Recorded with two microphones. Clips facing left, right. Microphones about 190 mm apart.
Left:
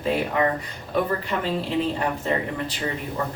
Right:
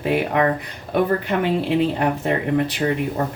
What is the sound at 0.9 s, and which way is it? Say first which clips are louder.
Speech: right 5 dB; 65° right (ahead or behind).